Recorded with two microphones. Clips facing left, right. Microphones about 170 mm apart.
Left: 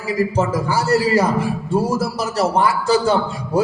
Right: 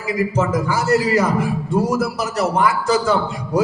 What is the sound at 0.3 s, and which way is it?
A man's voice, 30° left (ahead or behind).